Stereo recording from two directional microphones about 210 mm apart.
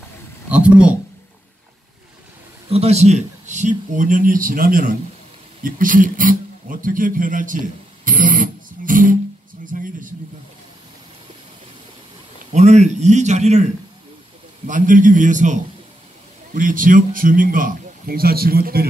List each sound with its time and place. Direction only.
0.5 s speech: 5° right (ahead or behind)
2.7 s a man's voice: 30° right (ahead or behind)
8.0 s a sound: 40° right (ahead or behind)
9.7 s a man's voice: 40° right (ahead or behind)
12.5 s a man's voice: 35° right (ahead or behind)
14.7 s a man's voice: 40° right (ahead or behind)